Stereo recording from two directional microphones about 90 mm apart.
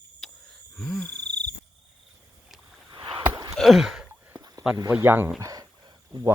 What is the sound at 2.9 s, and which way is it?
Rowboat, 55° right (ahead or behind).